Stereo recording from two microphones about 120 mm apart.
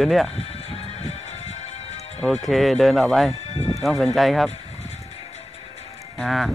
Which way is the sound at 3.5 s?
60° left (ahead or behind).